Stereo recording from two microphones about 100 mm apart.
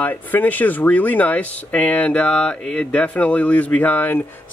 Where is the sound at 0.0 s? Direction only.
15° left (ahead or behind).